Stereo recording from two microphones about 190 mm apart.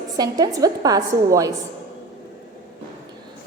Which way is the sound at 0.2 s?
20° right (ahead or behind).